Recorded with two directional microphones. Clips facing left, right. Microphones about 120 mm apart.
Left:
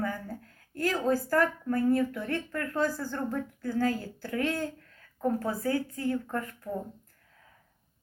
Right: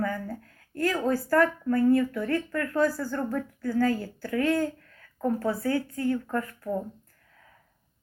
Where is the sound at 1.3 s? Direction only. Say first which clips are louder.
Right 4 dB; 25° left (ahead or behind).